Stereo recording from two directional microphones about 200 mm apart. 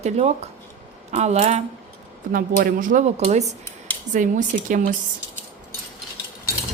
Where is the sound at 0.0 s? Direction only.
35° right (ahead or behind).